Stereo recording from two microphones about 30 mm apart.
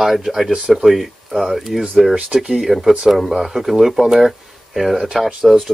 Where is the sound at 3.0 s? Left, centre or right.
Centre.